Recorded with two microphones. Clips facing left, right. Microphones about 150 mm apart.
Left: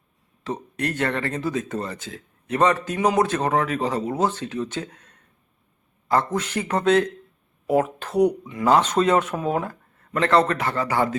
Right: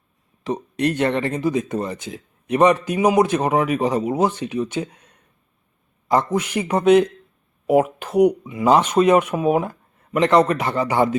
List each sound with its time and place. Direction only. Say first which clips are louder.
0.4 s speech: right 6 dB; 15° right (ahead or behind)